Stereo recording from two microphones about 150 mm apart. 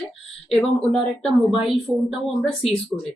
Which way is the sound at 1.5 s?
35° left (ahead or behind).